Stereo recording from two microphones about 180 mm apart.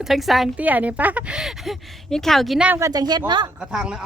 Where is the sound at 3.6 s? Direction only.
5° right (ahead or behind).